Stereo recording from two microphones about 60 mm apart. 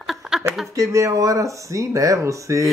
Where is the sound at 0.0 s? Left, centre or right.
Centre.